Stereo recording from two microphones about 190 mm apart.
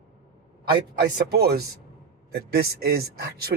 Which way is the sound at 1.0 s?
55° right (ahead or behind).